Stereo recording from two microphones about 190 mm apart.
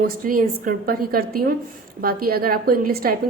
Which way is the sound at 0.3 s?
45° right (ahead or behind).